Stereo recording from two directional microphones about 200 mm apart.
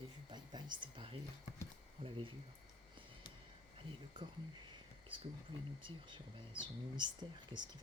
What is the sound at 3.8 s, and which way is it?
Speech, 25° right (ahead or behind).